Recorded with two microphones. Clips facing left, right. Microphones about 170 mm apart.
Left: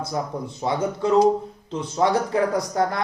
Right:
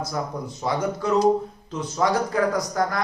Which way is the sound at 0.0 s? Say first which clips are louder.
Left 1 dB; 25° left (ahead or behind).